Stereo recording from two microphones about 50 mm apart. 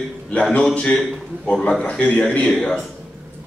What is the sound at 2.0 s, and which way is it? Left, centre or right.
Speech, left.